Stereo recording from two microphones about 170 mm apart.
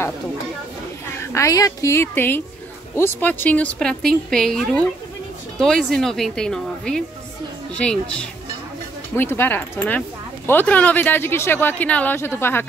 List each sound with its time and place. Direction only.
1.3 s a woman's voice: 20° left (ahead or behind)